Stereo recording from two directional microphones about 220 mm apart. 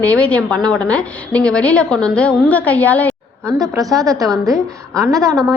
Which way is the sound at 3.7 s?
15° right (ahead or behind).